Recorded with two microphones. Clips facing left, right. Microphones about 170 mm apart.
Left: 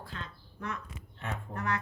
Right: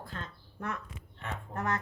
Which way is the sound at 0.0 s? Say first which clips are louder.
Right 1 dB; 45° right (ahead or behind).